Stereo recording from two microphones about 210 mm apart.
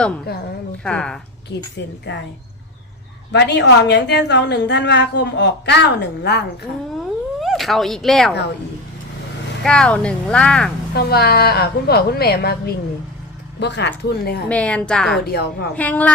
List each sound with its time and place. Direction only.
0.9 s speech: 5° left (ahead or behind)
3.3 s a woman's voice: 55° left (ahead or behind)
7.3 s speech: centre (ahead or behind)
9.6 s speech: 5° left (ahead or behind)
10.9 s speech: 50° left (ahead or behind)
13.6 s a woman's voice: 55° left (ahead or behind)
14.5 s speech: 5° left (ahead or behind)
15.3 s speech: 50° left (ahead or behind)
15.7 s a woman's voice: 5° left (ahead or behind)